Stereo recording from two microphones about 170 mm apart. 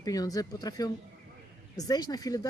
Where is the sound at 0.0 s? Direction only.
20° left (ahead or behind).